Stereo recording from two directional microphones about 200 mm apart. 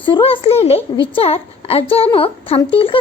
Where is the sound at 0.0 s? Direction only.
25° left (ahead or behind).